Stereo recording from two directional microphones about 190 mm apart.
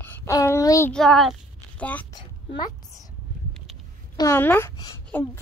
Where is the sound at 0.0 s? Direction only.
10° left (ahead or behind).